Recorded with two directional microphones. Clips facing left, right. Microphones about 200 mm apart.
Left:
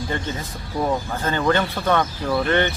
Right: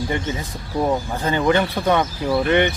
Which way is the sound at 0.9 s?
15° right (ahead or behind).